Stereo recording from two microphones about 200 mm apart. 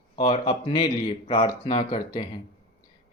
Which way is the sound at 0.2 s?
30° left (ahead or behind).